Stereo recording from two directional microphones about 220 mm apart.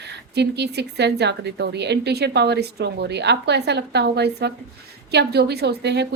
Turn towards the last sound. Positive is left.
turn(degrees=-50)  # may be behind; listen again after turning